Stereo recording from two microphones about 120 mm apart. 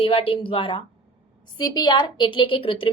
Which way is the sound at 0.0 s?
50° left (ahead or behind).